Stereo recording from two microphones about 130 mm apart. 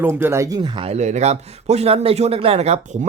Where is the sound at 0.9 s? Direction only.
60° right (ahead or behind).